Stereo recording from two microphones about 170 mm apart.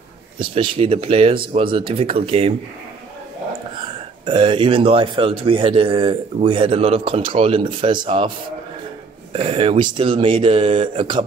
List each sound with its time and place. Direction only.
0.4 s a man's voice: 30° right (ahead or behind)
4.3 s a man's voice: 30° right (ahead or behind)
9.3 s a man's voice: 30° right (ahead or behind)